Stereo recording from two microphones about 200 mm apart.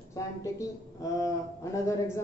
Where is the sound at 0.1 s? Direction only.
15° left (ahead or behind).